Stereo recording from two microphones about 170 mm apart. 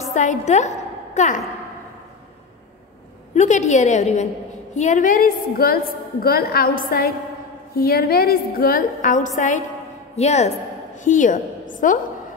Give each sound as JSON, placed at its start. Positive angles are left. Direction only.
{"t": 0.0, "sound": "a woman's voice", "side_deg": 45}
{"t": 3.3, "sound": "a woman's voice", "side_deg": 45}